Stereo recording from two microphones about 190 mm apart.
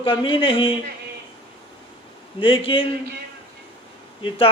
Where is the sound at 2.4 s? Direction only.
25° left (ahead or behind).